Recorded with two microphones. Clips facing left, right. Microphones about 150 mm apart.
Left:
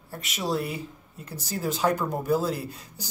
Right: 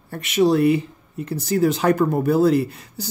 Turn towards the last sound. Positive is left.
turn(degrees=-70)  # may be behind; listen again after turning